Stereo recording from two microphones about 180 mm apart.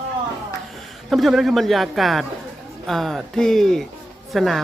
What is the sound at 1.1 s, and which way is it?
Speech, centre (ahead or behind).